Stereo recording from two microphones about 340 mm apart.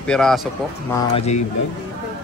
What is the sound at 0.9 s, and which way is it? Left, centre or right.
Speech, centre.